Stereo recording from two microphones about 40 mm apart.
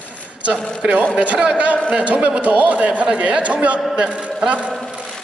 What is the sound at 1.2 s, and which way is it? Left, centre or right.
A man's voice, right.